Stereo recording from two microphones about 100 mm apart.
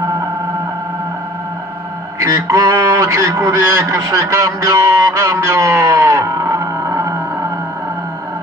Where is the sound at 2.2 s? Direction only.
30° right (ahead or behind).